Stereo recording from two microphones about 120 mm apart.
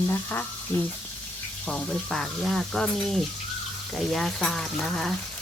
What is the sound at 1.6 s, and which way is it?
Speech, 5° left (ahead or behind).